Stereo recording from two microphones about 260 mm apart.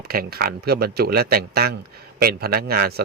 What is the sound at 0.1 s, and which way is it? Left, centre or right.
A man's voice, right.